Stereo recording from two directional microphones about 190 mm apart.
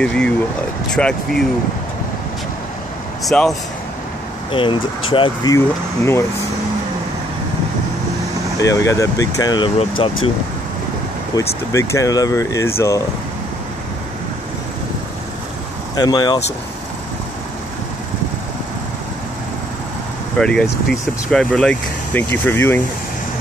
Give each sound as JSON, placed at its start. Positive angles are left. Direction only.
{"t": 0.0, "sound": "speech", "side_deg": 5}
{"t": 3.3, "sound": "speech", "side_deg": 0}
{"t": 4.5, "sound": "speech", "side_deg": 25}
{"t": 8.5, "sound": "speech", "side_deg": 15}
{"t": 11.3, "sound": "speech", "side_deg": 20}
{"t": 16.0, "sound": "speech", "side_deg": 20}
{"t": 20.3, "sound": "speech", "side_deg": 5}